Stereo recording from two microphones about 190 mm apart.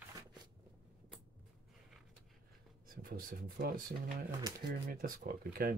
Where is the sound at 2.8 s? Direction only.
50° right (ahead or behind).